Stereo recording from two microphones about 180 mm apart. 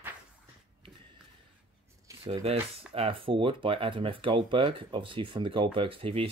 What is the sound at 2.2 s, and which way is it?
Speech, 30° right (ahead or behind).